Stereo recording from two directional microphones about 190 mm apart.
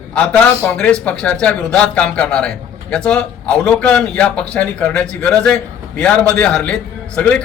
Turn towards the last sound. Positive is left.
turn(degrees=5)  # may be behind; listen again after turning